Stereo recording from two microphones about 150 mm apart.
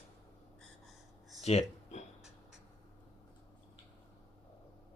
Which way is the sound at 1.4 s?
50° left (ahead or behind).